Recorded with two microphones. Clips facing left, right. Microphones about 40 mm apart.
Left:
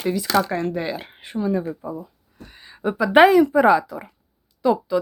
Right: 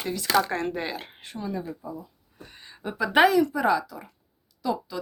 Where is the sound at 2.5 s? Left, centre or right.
Centre.